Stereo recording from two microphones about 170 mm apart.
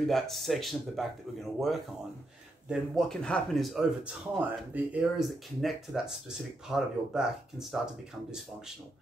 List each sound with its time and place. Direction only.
0.0 s speech: centre (ahead or behind)